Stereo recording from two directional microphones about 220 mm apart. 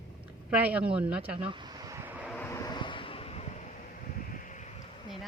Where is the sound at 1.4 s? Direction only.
20° right (ahead or behind).